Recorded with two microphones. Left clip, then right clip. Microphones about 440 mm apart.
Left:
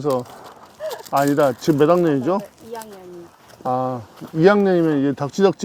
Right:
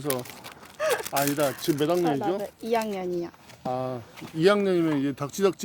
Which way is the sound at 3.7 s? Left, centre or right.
Left.